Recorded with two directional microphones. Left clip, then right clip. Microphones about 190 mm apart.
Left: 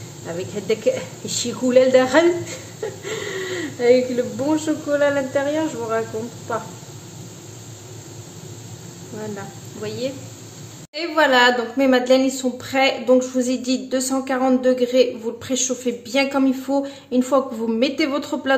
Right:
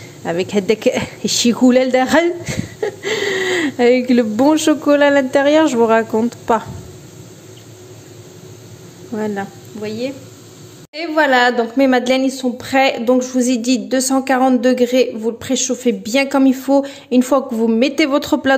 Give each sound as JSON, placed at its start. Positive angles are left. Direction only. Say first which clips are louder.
{"t": 0.2, "sound": "a woman's voice", "louder": "right 10 dB", "side_deg": -45}
{"t": 9.2, "sound": "a woman's voice", "louder": "right 9 dB", "side_deg": -40}
{"t": 12.3, "sound": "a woman's voice", "louder": "right 4 dB", "side_deg": -35}